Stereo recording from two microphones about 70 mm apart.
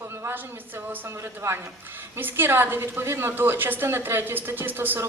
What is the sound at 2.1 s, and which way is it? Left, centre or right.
A woman's voice, right.